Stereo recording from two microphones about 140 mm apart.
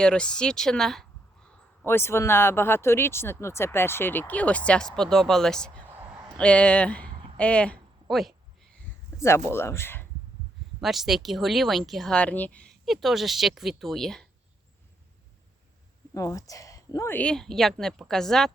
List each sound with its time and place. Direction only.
0.0 s speech: 5° left (ahead or behind)
1.5 s a man's voice: 15° left (ahead or behind); by 8.4 s centre (ahead or behind)
9.1 s a man's voice: 20° left (ahead or behind)
10.8 s speech: centre (ahead or behind)
16.1 s speech: 25° left (ahead or behind); by 18.5 s 5° left (ahead or behind)